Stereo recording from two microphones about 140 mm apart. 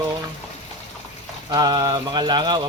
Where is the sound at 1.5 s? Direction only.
30° right (ahead or behind).